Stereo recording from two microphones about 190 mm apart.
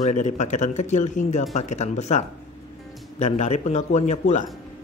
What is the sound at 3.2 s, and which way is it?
A man's voice, 35° left (ahead or behind).